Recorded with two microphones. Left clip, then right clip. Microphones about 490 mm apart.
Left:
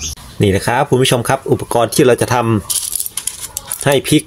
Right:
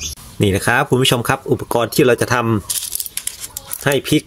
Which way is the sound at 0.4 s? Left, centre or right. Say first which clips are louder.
Left 2 dB; right.